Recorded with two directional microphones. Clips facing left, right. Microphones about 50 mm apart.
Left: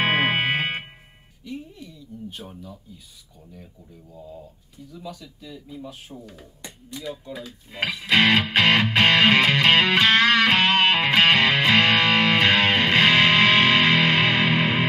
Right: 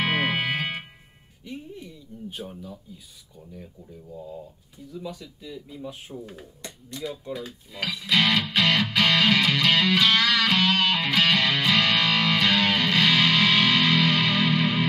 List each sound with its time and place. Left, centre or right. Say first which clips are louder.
0.0 s music: left 3 dB; left
1.5 s music: left 3 dB; centre
5.0 s speech: left 1 dB; centre
5.9 s speech: right 2 dB; centre
7.3 s music: left 3 dB; left